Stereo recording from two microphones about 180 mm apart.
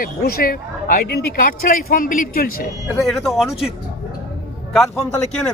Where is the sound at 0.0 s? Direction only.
55° left (ahead or behind).